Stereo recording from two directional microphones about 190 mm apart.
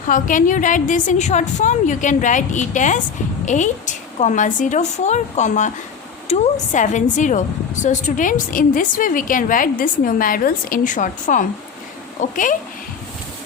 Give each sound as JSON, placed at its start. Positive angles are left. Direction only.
{"t": 0.1, "sound": "a woman's voice", "side_deg": 45}